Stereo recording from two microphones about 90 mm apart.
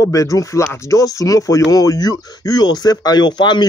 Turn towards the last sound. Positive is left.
turn(degrees=55)  # may be behind; listen again after turning